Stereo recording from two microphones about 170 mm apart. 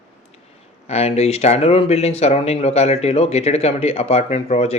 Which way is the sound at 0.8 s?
40° left (ahead or behind).